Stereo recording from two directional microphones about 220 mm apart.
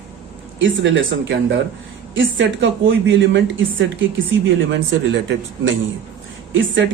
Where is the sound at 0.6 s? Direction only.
55° right (ahead or behind).